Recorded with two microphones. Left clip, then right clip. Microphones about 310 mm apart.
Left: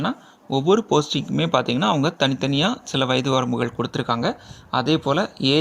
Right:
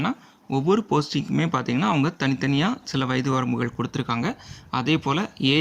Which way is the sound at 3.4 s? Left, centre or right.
Centre.